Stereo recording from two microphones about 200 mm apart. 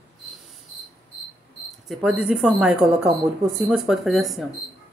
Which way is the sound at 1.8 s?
5° right (ahead or behind).